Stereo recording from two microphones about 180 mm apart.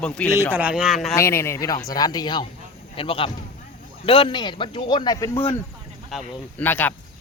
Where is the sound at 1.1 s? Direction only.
15° left (ahead or behind).